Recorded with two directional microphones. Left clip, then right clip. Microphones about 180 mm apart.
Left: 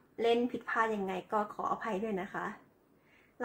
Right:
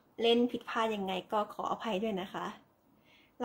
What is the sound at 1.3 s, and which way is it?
Speech, 10° right (ahead or behind).